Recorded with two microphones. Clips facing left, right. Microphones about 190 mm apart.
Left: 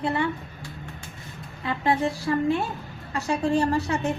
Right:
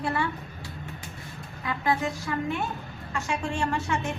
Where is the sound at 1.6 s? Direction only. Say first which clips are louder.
Left 3 dB; 30° left (ahead or behind).